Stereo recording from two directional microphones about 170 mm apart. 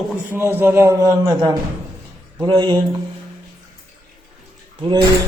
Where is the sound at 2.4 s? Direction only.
25° right (ahead or behind).